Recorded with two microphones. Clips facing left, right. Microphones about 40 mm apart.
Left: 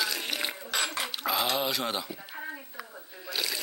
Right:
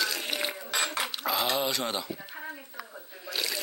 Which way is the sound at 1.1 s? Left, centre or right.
Centre.